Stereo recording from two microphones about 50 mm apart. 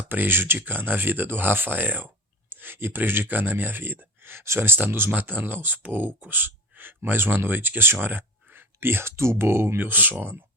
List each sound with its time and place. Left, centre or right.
0.1 s speech: right